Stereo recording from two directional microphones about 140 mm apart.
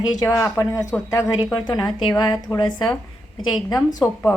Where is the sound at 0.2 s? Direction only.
20° left (ahead or behind).